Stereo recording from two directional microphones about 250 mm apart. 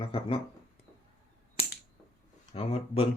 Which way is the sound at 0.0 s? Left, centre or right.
Left.